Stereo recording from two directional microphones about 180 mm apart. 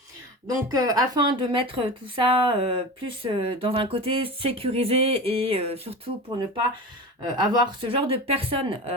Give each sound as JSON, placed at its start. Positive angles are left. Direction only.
{"t": 0.4, "sound": "a woman's voice", "side_deg": -20}